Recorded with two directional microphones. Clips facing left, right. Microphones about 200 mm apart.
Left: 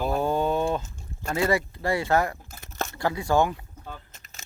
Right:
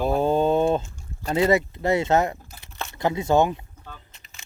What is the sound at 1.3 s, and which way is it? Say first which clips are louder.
Speech: right 4 dB; 20° right (ahead or behind).